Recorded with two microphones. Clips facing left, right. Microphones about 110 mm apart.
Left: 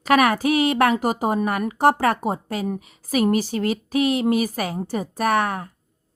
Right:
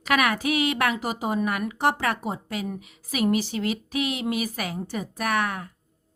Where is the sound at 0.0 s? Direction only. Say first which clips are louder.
Left 6 dB; 40° left (ahead or behind).